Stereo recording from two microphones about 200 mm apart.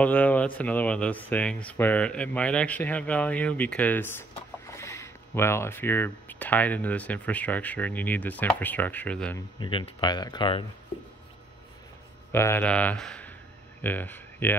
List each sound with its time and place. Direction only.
0.0 s speech: 10° left (ahead or behind)
9.6 s speech: 25° left (ahead or behind)
12.3 s speech: 10° left (ahead or behind)